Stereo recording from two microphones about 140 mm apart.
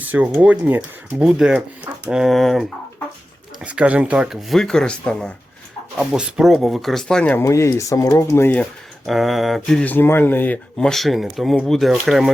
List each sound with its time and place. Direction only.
0.0 s speech: 10° right (ahead or behind); by 5.3 s 5° left (ahead or behind)
6.0 s speech: 5° right (ahead or behind)
7.4 s speech: 20° left (ahead or behind)
9.0 s speech: centre (ahead or behind)
10.8 s speech: centre (ahead or behind)